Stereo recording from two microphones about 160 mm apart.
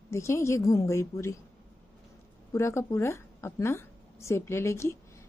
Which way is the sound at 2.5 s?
15° left (ahead or behind).